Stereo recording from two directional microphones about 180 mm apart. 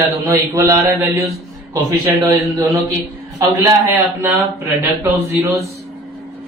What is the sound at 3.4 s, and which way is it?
Speech, 15° right (ahead or behind).